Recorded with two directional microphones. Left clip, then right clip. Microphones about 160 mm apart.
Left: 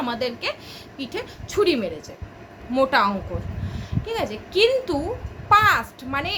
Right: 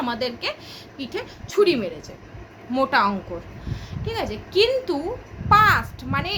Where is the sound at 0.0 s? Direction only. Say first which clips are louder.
Even; centre (ahead or behind).